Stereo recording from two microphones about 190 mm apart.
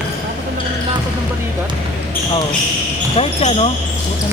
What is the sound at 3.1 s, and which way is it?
Speech, 30° left (ahead or behind).